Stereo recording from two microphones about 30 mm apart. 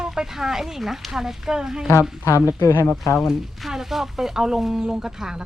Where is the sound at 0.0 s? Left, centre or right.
Centre.